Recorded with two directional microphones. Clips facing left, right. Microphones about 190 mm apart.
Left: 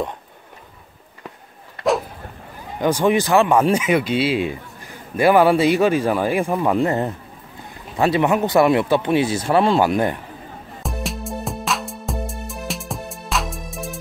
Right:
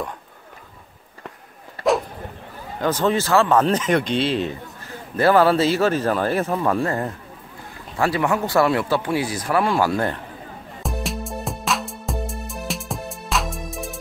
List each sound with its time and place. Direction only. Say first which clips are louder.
2.8 s speech: left 3 dB; 15° left (ahead or behind)
10.8 s music: even; centre (ahead or behind)